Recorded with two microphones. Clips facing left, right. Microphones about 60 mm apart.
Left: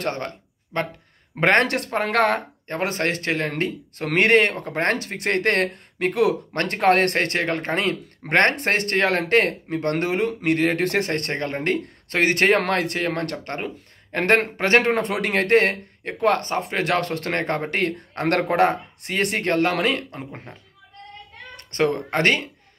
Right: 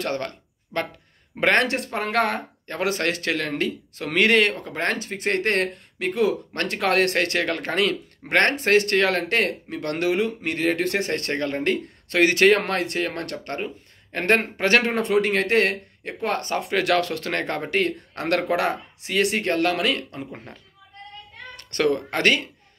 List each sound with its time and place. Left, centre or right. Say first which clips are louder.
0.0 s a sound: even; left
1.4 s speech: left 2 dB; left
1.7 s speech: left 3 dB; left
2.7 s speech: even; left
4.9 s speech: left 1 dB; left
6.5 s speech: left 4 dB; left
12.5 s speech: left 2 dB; left
14.6 s speech: left 2 dB; left
16.4 s speech: right 1 dB; left
21.5 s speech: even; left